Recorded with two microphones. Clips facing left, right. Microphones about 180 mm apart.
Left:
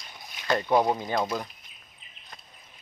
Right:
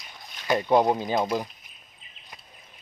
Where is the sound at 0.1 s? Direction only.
10° left (ahead or behind).